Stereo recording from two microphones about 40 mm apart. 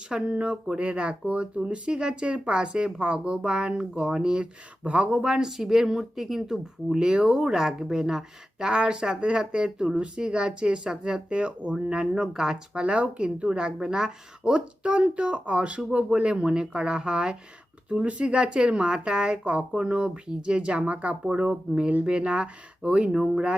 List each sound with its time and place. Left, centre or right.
0.1 s speech: right
5.5 s a woman's voice: centre
6.9 s speech: right
12.1 s a woman's voice: centre
12.8 s speech: right
23.1 s speech: centre